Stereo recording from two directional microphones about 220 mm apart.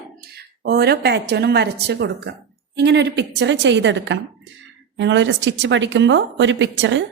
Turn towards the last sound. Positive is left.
turn(degrees=-55)  # may be behind; listen again after turning